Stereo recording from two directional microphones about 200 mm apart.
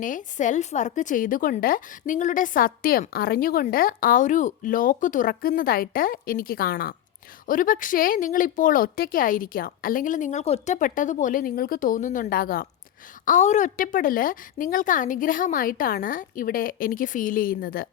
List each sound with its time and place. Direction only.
0.0 s speech: 40° left (ahead or behind)